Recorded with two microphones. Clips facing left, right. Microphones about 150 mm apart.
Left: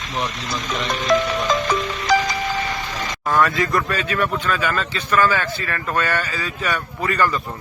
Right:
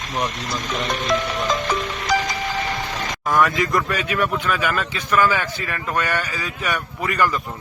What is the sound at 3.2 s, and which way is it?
Speech, 10° right (ahead or behind).